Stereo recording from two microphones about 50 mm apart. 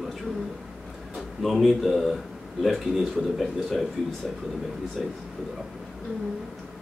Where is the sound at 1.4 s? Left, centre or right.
Centre.